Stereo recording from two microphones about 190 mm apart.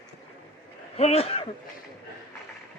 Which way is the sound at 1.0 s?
35° left (ahead or behind).